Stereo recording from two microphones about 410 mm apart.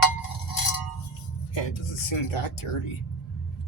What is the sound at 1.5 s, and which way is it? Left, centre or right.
Speech, left.